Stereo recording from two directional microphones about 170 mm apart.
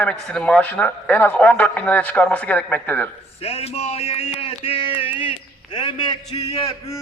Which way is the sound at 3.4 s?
35° left (ahead or behind).